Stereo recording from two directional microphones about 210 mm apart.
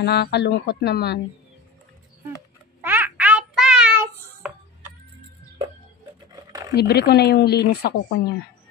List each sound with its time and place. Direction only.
0.0 s speech: 50° left (ahead or behind)
2.8 s child singing: 10° right (ahead or behind)
6.7 s speech: 50° left (ahead or behind)